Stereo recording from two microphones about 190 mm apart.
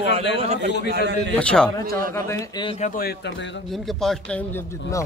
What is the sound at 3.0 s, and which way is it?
Speech, 60° left (ahead or behind).